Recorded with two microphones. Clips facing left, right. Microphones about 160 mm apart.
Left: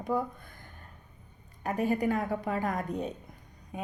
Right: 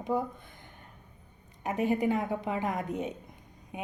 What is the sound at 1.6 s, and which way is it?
A woman's voice, 20° right (ahead or behind).